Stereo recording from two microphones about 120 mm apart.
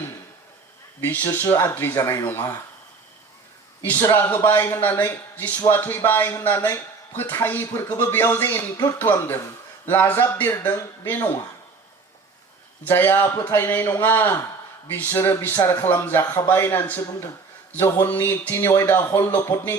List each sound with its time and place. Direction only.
1.0 s speech: 15° left (ahead or behind)
3.8 s speech: 15° left (ahead or behind)
12.9 s speech: 15° left (ahead or behind)